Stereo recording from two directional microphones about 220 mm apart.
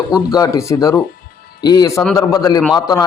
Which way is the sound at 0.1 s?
15° left (ahead or behind).